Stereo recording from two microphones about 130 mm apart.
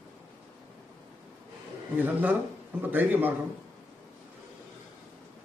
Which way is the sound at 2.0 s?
15° right (ahead or behind).